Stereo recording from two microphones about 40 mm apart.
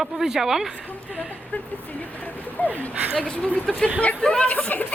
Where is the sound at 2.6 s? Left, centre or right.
Left.